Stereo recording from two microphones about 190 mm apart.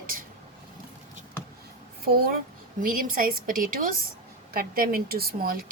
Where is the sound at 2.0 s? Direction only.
55° right (ahead or behind).